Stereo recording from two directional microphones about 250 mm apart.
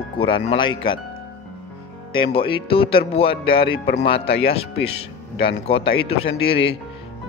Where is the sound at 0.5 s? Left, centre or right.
Centre.